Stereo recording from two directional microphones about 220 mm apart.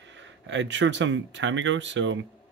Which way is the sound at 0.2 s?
55° right (ahead or behind).